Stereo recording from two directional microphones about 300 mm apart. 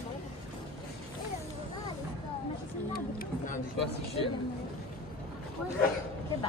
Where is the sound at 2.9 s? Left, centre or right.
Left.